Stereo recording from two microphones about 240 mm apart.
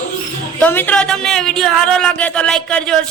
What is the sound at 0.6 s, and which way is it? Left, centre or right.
A woman's voice, centre.